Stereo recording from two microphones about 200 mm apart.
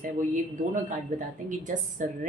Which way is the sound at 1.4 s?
40° right (ahead or behind).